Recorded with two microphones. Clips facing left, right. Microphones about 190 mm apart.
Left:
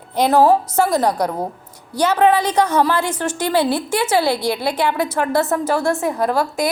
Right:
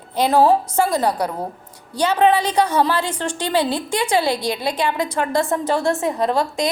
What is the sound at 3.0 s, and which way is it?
A woman's voice, 10° left (ahead or behind).